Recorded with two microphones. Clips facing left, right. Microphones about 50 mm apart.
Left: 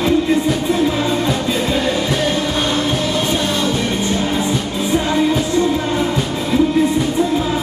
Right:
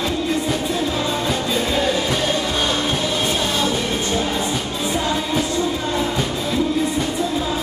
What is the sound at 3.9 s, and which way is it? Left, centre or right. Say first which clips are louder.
Music: left 3 dB; centre.